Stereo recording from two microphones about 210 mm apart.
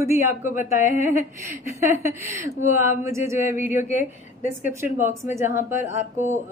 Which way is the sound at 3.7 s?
35° left (ahead or behind).